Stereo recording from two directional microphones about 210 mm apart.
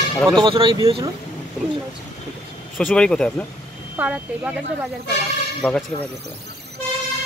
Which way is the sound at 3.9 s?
5° right (ahead or behind).